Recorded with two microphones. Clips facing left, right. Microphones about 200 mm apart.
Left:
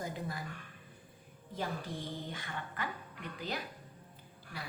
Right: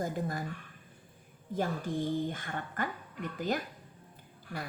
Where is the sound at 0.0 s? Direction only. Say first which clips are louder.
Right 6 dB; 45° right (ahead or behind).